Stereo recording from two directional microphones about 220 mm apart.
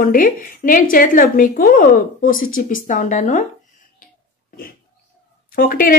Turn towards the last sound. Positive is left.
turn(degrees=40)  # may be behind; listen again after turning